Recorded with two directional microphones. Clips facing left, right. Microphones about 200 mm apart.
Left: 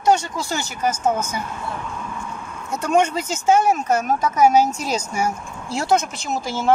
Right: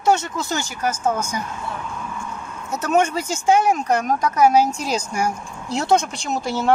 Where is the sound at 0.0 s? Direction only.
25° right (ahead or behind).